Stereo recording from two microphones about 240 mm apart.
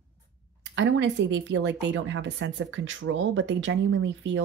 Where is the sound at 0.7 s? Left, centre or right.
Right.